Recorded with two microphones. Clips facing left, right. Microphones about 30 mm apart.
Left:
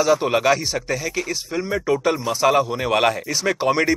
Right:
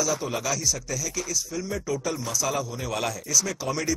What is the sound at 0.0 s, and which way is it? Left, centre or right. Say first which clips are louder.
Speech: left 10 dB; left.